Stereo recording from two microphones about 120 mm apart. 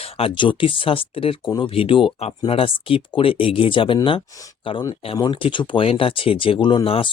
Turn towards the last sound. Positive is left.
turn(degrees=45)  # may be behind; listen again after turning